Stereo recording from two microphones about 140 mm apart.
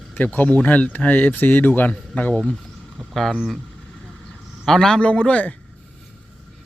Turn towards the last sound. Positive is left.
turn(degrees=10)  # may be behind; listen again after turning